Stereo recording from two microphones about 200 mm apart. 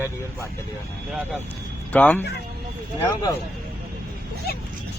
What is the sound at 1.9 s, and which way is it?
Speech, 10° left (ahead or behind).